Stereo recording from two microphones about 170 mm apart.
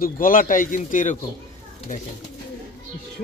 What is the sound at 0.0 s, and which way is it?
Speech, 55° left (ahead or behind).